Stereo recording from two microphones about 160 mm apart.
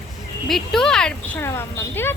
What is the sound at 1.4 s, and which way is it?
Speech, 15° left (ahead or behind).